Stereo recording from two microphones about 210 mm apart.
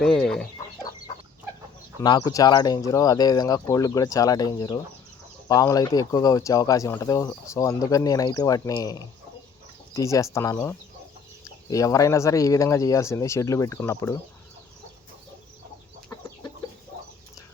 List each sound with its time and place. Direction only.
0.0 s speech: centre (ahead or behind)
2.0 s speech: 15° left (ahead or behind)